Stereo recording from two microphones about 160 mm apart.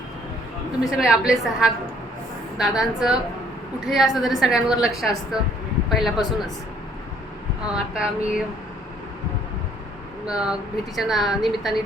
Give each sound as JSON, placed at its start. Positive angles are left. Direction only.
{"t": 0.9, "sound": "a woman's voice", "side_deg": -5}
{"t": 7.7, "sound": "a woman's voice", "side_deg": -5}
{"t": 10.2, "sound": "a woman's voice", "side_deg": -5}